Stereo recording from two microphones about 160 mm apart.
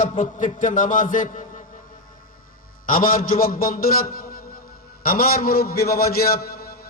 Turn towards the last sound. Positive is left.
turn(degrees=70)  # may be behind; listen again after turning